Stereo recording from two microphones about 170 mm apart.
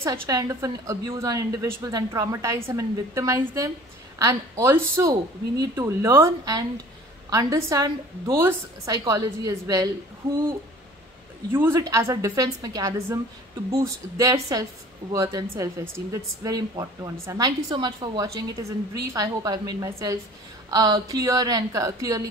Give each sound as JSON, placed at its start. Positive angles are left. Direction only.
{"t": 0.0, "sound": "a woman's voice", "side_deg": -20}
{"t": 11.5, "sound": "speech", "side_deg": -15}